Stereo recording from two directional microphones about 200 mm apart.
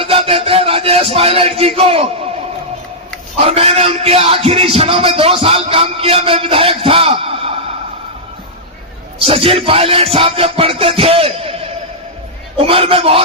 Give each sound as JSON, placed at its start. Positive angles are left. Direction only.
{"t": 0.0, "sound": "music", "side_deg": -30}
{"t": 3.4, "sound": "music", "side_deg": -30}
{"t": 9.2, "sound": "music", "side_deg": -30}